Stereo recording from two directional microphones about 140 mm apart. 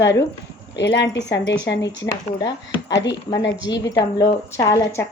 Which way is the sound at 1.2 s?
25° left (ahead or behind).